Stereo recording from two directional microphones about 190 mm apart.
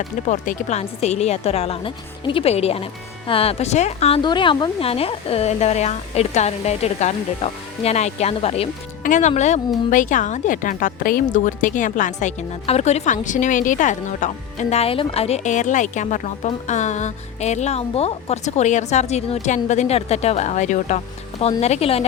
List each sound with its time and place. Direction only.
0.3 s a woman's voice: 40° left (ahead or behind)